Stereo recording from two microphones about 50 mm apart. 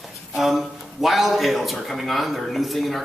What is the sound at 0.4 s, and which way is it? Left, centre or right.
A man's voice, centre.